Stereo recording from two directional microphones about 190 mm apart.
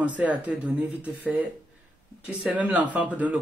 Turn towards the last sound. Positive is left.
turn(degrees=-10)  # may be behind; listen again after turning